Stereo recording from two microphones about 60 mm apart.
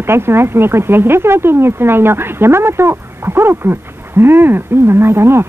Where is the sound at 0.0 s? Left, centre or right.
Right.